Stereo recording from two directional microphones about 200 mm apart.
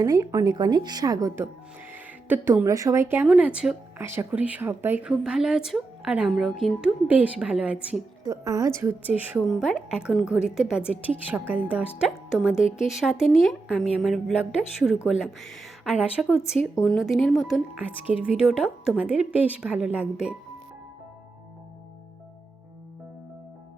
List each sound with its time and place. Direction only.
0.0 s a woman's voice: 15° right (ahead or behind)
8.2 s a woman's voice: 15° right (ahead or behind)
16.4 s speech: 15° left (ahead or behind)
16.9 s a woman's voice: centre (ahead or behind)